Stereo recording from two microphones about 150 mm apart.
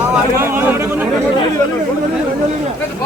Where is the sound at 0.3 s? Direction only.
15° right (ahead or behind).